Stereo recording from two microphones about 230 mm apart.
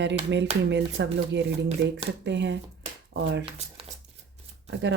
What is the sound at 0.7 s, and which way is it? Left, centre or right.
Speech, right.